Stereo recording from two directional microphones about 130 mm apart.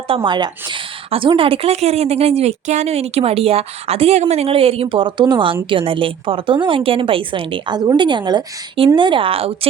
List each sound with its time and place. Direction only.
0.1 s a woman's voice: 40° right (ahead or behind)